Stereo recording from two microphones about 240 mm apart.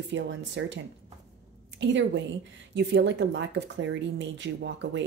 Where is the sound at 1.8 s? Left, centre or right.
Right.